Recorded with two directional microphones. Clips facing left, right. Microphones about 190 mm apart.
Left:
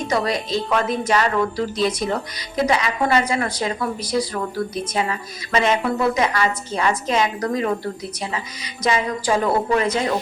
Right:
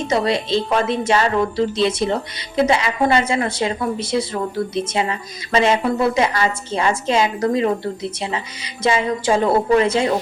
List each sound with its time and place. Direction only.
0.1 s a woman's voice: 25° right (ahead or behind)
8.8 s a woman's voice: 30° right (ahead or behind)